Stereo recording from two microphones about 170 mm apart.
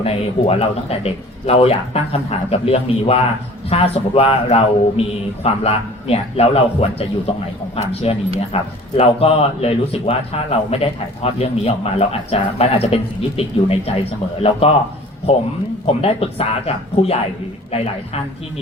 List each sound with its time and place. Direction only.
0.0 s speech: 35° left (ahead or behind)
15.9 s speech: 35° left (ahead or behind)